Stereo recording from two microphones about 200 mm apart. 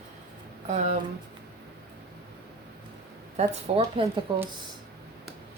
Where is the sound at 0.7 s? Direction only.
35° right (ahead or behind).